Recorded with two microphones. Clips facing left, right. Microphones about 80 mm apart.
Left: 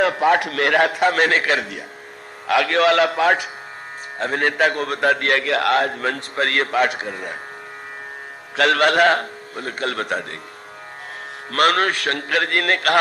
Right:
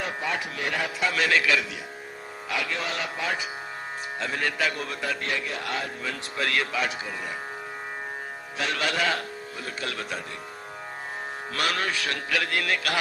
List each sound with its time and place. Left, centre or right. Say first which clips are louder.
0.0 s a man's voice: left 13 dB; left
2.5 s a man's voice: left 14 dB; left
4.2 s a man's voice: left 9 dB; left
8.5 s a man's voice: left 12 dB; left
11.5 s a man's voice: left 10 dB; left